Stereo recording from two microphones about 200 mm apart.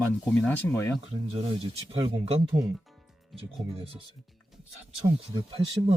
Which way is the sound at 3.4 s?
30° right (ahead or behind).